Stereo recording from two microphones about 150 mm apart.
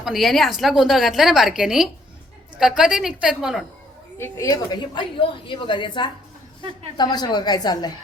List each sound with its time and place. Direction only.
0.0 s a woman's voice: centre (ahead or behind)
4.2 s a woman's voice: 20° left (ahead or behind)